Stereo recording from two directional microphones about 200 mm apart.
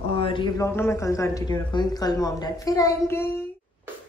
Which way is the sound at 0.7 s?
15° left (ahead or behind).